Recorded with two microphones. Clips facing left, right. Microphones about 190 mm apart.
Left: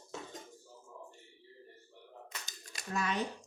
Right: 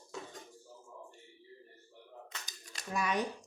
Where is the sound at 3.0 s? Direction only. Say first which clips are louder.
Right 2 dB; 15° right (ahead or behind).